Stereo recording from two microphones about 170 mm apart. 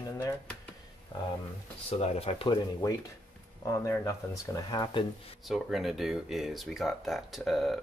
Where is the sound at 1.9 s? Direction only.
35° left (ahead or behind).